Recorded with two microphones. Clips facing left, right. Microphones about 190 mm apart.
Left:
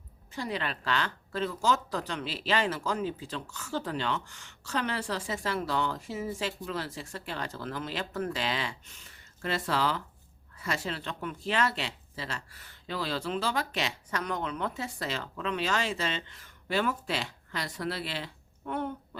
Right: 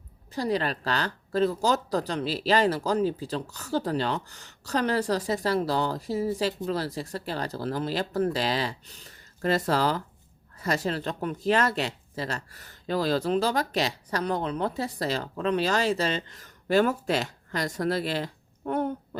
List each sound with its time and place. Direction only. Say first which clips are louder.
0.3 s speech: right 7 dB; 35° right (ahead or behind)